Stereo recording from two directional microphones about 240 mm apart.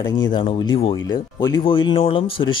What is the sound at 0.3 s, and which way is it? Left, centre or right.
Speech, centre.